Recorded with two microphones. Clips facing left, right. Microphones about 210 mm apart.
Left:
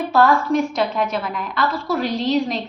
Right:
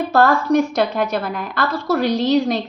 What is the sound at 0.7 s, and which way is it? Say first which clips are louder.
A woman's voice: right 2 dB; 70° right (ahead or behind).